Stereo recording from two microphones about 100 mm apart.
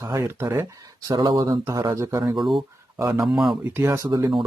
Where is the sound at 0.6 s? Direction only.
40° right (ahead or behind).